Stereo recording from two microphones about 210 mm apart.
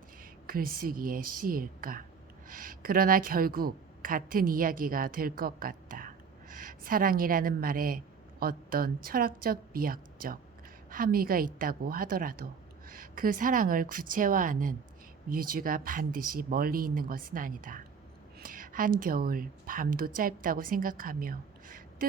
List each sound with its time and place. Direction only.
0.2 s a woman's voice: 45° right (ahead or behind)